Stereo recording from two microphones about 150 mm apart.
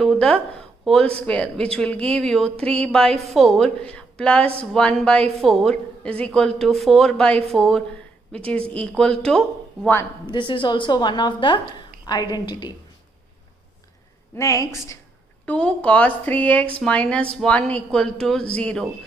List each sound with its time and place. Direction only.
0.0 s a sound: 5° left (ahead or behind)
0.8 s a woman's voice: 5° left (ahead or behind)
10.3 s a woman's voice: 35° left (ahead or behind)
14.3 s a woman's voice: 20° left (ahead or behind)
15.4 s speech: 10° left (ahead or behind)